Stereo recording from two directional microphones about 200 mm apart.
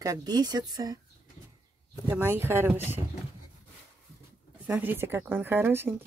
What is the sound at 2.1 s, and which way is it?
Speech, 10° right (ahead or behind).